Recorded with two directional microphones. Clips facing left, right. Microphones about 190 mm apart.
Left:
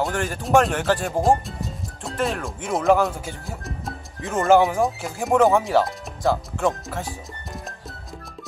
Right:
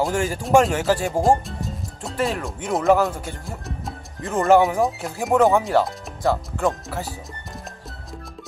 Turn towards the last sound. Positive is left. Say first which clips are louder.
# even
turn(degrees=0)  # may be behind; listen again after turning